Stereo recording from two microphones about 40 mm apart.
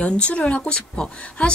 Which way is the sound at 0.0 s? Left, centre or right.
Left.